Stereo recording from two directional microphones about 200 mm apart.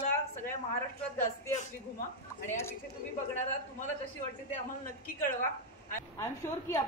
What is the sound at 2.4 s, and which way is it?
Speech, 10° left (ahead or behind).